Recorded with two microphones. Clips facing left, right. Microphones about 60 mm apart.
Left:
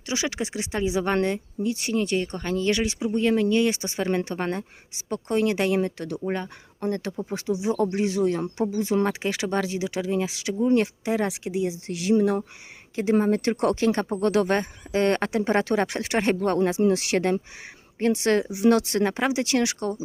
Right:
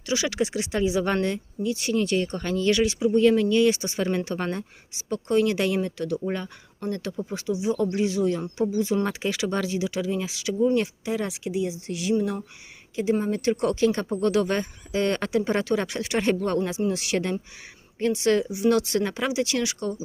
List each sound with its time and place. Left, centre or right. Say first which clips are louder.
0.0 s speech: right 3 dB; left
7.6 s speech: even; left
13.9 s speech: left 1 dB; left
16.5 s speech: left 4 dB; left